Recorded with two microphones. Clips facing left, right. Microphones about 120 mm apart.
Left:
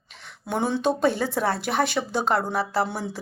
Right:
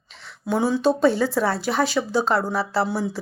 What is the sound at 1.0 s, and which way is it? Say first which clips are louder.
Speech: right 4 dB; 50° left (ahead or behind).